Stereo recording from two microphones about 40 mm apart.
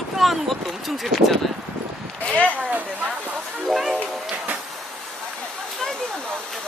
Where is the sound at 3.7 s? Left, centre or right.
Centre.